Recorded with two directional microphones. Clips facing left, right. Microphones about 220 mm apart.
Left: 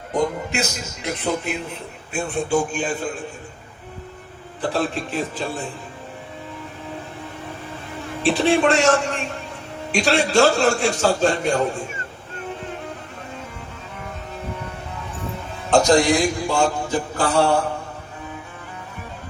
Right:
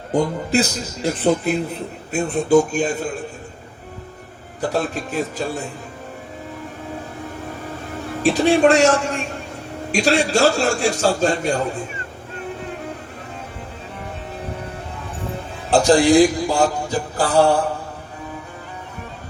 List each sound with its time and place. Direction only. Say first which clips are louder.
0.1 s a man's voice: right 4 dB; 30° right (ahead or behind)
4.7 s a man's voice: even; 45° right (ahead or behind)
8.2 s a man's voice: right 3 dB; 40° right (ahead or behind)
15.7 s a man's voice: right 3 dB; 35° right (ahead or behind)